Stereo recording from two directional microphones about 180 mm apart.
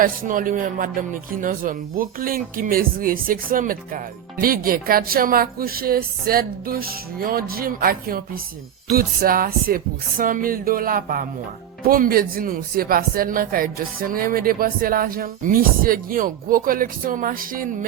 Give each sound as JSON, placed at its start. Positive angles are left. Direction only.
{"t": 0.0, "sound": "speech", "side_deg": -50}